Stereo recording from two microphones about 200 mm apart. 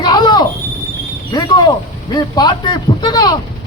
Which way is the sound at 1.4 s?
20° left (ahead or behind).